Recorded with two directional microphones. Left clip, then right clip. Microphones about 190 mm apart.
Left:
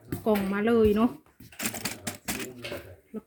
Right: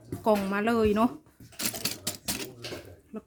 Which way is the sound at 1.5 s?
25° right (ahead or behind).